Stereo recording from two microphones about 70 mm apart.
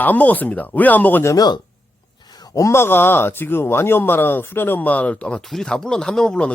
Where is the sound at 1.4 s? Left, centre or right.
Left.